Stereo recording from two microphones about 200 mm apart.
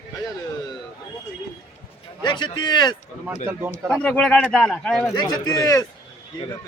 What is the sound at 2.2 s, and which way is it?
Speech, 20° left (ahead or behind).